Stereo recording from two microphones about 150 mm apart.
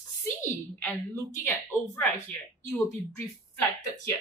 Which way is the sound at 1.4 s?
15° left (ahead or behind).